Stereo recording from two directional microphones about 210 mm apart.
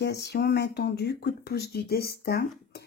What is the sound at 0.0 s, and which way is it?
Speech, 55° left (ahead or behind).